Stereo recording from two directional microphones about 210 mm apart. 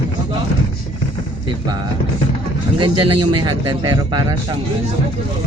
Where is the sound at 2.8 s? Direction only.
20° right (ahead or behind).